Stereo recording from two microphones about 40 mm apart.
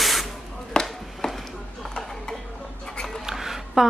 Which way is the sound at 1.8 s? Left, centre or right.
Centre.